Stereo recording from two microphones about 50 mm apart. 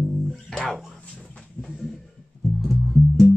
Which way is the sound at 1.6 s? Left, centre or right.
Centre.